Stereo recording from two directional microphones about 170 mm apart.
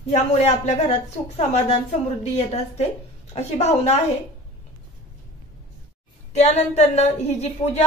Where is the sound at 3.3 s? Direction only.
40° left (ahead or behind).